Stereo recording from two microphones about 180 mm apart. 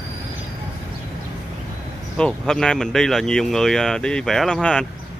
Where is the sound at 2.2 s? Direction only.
5° left (ahead or behind).